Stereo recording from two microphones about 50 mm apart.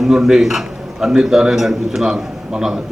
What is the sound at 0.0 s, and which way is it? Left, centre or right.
A man's voice, centre.